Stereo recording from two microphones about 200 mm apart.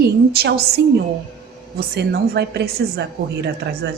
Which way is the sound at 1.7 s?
55° right (ahead or behind).